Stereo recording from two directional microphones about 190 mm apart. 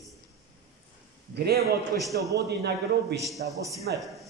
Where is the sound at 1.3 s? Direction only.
55° right (ahead or behind).